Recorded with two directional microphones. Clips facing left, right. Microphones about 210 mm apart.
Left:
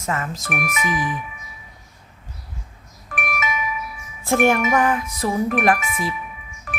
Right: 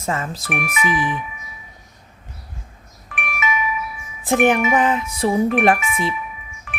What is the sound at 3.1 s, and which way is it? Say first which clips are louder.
Music: right 1 dB; 40° left (ahead or behind).